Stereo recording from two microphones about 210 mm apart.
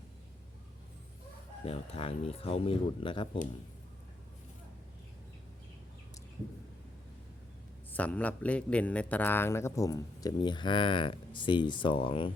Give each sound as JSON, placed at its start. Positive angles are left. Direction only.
{"t": 1.6, "sound": "speech", "side_deg": 30}
{"t": 7.9, "sound": "a man's voice", "side_deg": 5}